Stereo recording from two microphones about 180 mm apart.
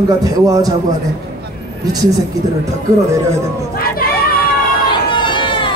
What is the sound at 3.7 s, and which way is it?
Crowd, 55° left (ahead or behind).